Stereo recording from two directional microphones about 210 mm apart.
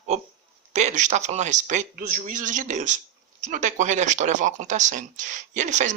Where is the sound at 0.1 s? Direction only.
35° right (ahead or behind).